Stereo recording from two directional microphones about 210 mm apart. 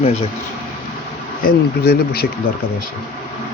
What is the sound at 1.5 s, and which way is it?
Speech, 50° left (ahead or behind).